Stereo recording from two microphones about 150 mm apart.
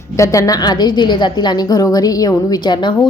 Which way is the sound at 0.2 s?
20° left (ahead or behind).